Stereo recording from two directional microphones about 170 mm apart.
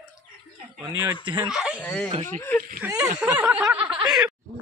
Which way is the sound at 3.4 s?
5° right (ahead or behind).